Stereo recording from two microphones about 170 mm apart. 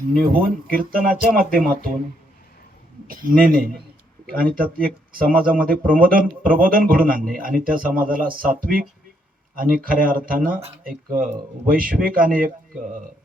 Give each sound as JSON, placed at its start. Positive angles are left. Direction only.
{"t": 0.7, "sound": "speech", "side_deg": -55}
{"t": 3.1, "sound": "speech", "side_deg": -55}